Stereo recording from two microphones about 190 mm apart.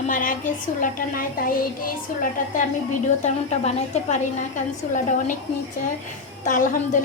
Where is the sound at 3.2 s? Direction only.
40° left (ahead or behind).